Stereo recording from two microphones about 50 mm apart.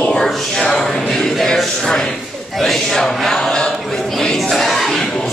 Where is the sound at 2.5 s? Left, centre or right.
Centre.